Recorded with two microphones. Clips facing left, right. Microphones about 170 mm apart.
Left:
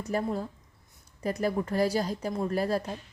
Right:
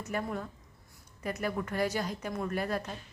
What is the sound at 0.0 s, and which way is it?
A woman's voice, 35° left (ahead or behind).